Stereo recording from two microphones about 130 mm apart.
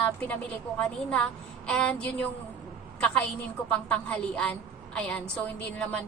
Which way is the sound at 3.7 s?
10° left (ahead or behind).